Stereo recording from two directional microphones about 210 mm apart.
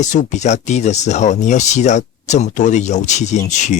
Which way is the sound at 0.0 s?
35° left (ahead or behind).